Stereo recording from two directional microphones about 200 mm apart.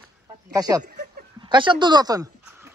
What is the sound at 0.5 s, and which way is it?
Speech, 20° right (ahead or behind).